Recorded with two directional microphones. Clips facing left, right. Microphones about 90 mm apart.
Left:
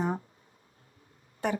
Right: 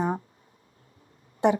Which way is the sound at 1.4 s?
20° right (ahead or behind).